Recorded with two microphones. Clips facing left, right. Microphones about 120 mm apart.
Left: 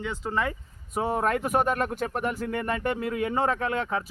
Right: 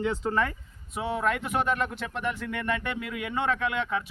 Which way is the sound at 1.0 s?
40° left (ahead or behind).